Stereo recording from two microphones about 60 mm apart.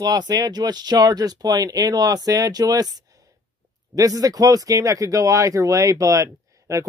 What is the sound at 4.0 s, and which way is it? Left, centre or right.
Speech, right.